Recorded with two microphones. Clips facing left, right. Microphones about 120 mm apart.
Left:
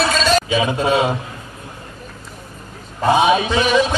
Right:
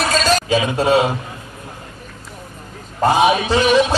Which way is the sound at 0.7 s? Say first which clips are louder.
Right 4 dB; 35° right (ahead or behind).